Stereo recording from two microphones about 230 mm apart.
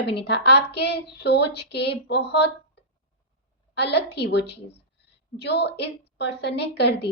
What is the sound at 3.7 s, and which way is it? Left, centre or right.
Speech, left.